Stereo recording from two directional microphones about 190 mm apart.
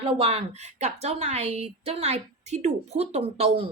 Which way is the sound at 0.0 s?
30° right (ahead or behind).